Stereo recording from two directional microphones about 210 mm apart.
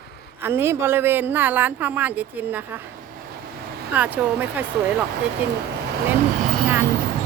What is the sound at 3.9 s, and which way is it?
Speech, 10° right (ahead or behind).